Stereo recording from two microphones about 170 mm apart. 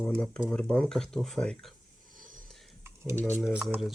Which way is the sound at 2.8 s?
15° right (ahead or behind).